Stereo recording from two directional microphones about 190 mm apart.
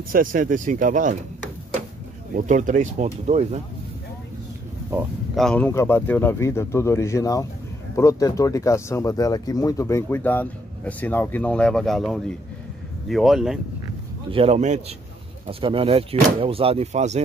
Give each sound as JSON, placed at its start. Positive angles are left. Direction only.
{"t": 0.1, "sound": "speech", "side_deg": -45}
{"t": 2.3, "sound": "speech", "side_deg": -40}
{"t": 4.9, "sound": "speech", "side_deg": 0}
{"t": 5.7, "sound": "speech", "side_deg": 15}
{"t": 14.3, "sound": "speech", "side_deg": -35}